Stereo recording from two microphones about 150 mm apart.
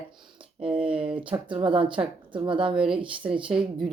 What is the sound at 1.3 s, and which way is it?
Speech, 35° right (ahead or behind).